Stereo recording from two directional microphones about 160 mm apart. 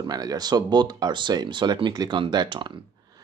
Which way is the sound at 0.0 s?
25° right (ahead or behind).